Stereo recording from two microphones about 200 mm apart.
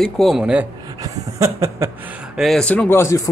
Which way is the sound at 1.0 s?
15° right (ahead or behind).